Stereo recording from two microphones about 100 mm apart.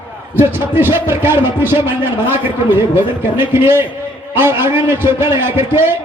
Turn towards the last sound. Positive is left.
turn(degrees=-25)  # may be behind; listen again after turning